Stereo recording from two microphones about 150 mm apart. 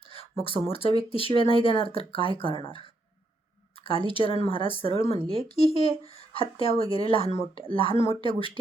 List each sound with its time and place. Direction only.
0.1 s speech: 40° left (ahead or behind)
3.8 s speech: 40° left (ahead or behind)
5.2 s speech: 35° right (ahead or behind)
5.5 s speech: 40° left (ahead or behind)